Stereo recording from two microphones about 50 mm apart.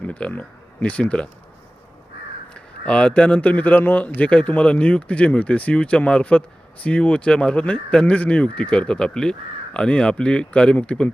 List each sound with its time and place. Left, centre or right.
0.1 s speech: left
2.5 s a man's voice: left